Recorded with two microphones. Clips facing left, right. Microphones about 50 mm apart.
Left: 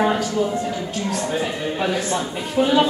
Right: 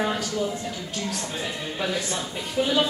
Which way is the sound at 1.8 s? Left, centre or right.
Left.